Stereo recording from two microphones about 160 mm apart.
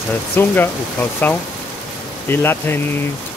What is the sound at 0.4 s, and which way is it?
Speech, 15° left (ahead or behind).